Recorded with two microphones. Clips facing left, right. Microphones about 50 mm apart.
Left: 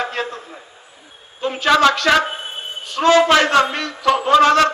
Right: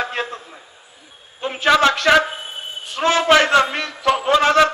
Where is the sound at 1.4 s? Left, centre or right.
Right.